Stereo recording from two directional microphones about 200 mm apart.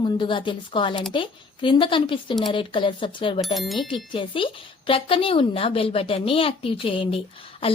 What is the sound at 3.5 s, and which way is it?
Speech, centre (ahead or behind).